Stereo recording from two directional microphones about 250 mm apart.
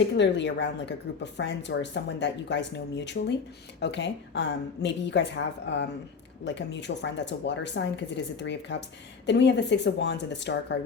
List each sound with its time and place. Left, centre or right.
0.2 s speech: left